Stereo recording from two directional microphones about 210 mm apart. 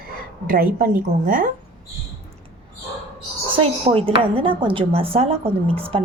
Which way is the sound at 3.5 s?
25° right (ahead or behind).